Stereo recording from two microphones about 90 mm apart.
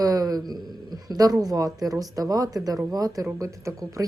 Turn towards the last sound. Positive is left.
turn(degrees=-35)  # may be behind; listen again after turning